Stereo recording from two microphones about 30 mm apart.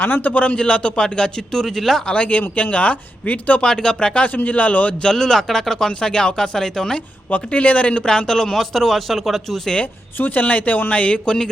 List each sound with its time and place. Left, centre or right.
0.0 s a man's voice: left
0.3 s a man's voice: left
1.0 s speech: left
1.6 s speech: centre
2.1 s speech: left
3.6 s speech: left
4.3 s a man's voice: left
5.0 s speech: centre
5.9 s speech: left
7.3 s speech: left
8.0 s speech: left
8.5 s speech: centre
9.8 s speech: left
10.4 s a man's voice: left